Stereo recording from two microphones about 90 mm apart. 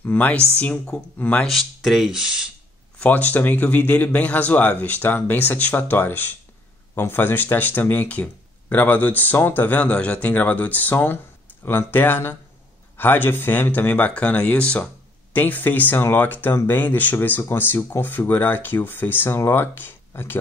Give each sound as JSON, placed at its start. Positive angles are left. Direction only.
{"t": 0.0, "sound": "speech", "side_deg": 20}
{"t": 3.0, "sound": "speech", "side_deg": 15}